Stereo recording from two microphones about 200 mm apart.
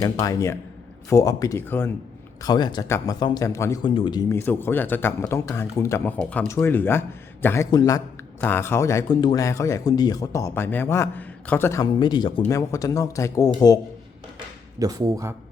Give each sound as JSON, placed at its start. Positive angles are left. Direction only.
{"t": 0.0, "sound": "a man's voice", "side_deg": 15}
{"t": 6.1, "sound": "a man's voice", "side_deg": 5}
{"t": 14.8, "sound": "speech", "side_deg": -15}